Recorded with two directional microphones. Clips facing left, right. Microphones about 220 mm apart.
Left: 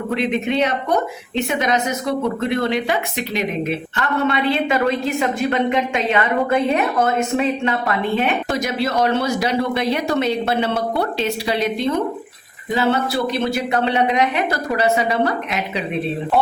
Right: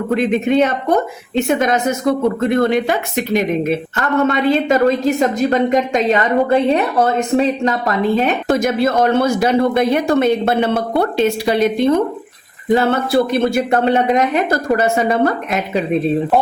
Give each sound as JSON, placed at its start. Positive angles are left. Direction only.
{"t": 0.1, "sound": "a woman's voice", "side_deg": -45}
{"t": 8.5, "sound": "speech", "side_deg": -50}